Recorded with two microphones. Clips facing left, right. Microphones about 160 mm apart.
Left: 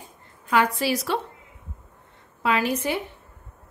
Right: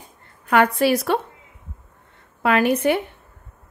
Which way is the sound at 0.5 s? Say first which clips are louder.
Right 5 dB; 55° right (ahead or behind).